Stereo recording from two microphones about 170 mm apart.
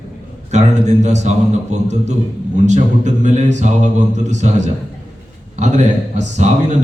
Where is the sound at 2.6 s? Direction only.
45° right (ahead or behind).